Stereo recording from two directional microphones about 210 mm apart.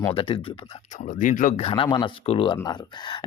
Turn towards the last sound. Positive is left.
turn(degrees=20)  # may be behind; listen again after turning